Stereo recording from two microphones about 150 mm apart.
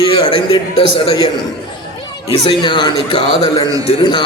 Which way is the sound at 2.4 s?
30° left (ahead or behind).